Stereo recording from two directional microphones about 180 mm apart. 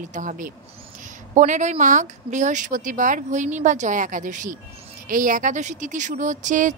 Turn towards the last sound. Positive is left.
turn(degrees=-45)  # may be behind; listen again after turning